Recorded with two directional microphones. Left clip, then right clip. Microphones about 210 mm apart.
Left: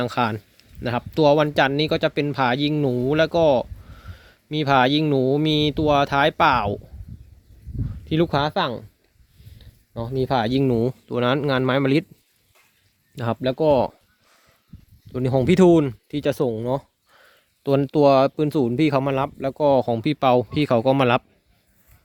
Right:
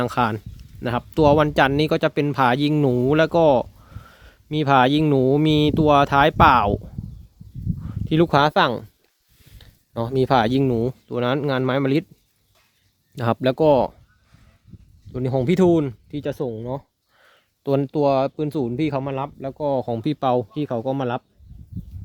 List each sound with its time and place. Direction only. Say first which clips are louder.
0.0 s speech: right 1 dB; 10° right (ahead or behind)
7.9 s a sound: right 3 dB; 15° right (ahead or behind)
8.4 s speech: right 5 dB; 30° right (ahead or behind)
9.4 s a sound: right 2 dB; 35° right (ahead or behind)
10.5 s speech: even; 5° right (ahead or behind)
13.2 s speech: right 3 dB; 25° right (ahead or behind)
13.7 s speech: right 1 dB; 5° right (ahead or behind)
15.1 s speech: left 2 dB; 5° left (ahead or behind)
16.3 s speech: left 5 dB; 30° left (ahead or behind)
17.2 s speech: left 1 dB; 5° right (ahead or behind); by 19.0 s 15° left (ahead or behind)
19.0 s speech: left 4 dB; 35° left (ahead or behind)
19.8 s speech: left 3 dB; centre (ahead or behind)